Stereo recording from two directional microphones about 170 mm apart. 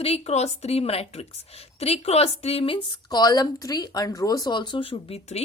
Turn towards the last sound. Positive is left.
turn(degrees=35)  # may be behind; listen again after turning